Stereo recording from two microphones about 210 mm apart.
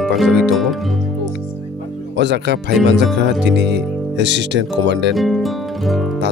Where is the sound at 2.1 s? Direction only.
55° right (ahead or behind).